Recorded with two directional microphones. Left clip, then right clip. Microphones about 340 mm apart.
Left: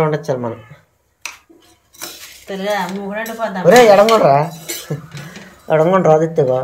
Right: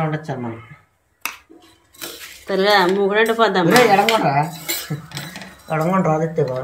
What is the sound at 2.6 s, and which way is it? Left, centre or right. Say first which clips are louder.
Speech: right 6 dB; right.